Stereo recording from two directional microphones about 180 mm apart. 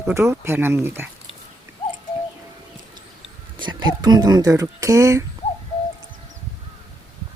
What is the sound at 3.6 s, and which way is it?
Speech, 25° right (ahead or behind).